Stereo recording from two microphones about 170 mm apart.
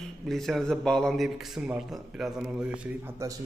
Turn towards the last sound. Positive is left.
turn(degrees=-15)  # may be behind; listen again after turning